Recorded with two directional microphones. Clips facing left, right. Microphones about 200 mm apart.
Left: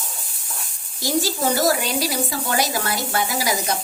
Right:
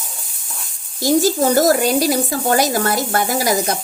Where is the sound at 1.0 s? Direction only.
45° right (ahead or behind).